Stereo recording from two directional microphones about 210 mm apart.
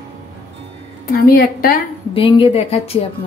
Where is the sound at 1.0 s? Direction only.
45° left (ahead or behind).